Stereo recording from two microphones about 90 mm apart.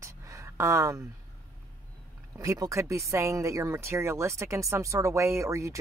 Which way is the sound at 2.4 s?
35° right (ahead or behind).